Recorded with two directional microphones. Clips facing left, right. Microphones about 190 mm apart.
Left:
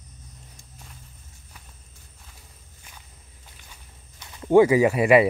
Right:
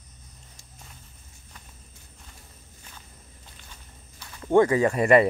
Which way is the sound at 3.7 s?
15° left (ahead or behind).